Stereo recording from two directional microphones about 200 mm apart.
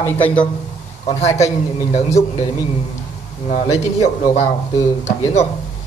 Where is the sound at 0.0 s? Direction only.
5° left (ahead or behind).